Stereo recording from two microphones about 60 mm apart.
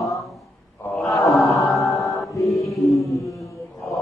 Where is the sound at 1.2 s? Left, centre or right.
Centre.